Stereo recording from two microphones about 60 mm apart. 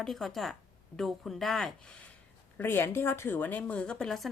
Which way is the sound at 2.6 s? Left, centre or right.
Left.